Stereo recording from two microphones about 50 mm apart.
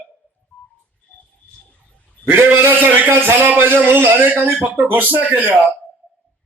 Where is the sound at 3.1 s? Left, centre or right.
Right.